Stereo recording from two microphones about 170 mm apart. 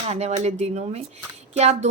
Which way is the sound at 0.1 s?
40° right (ahead or behind).